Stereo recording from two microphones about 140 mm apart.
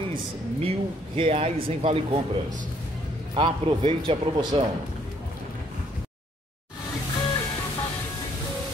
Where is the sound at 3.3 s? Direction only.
40° right (ahead or behind).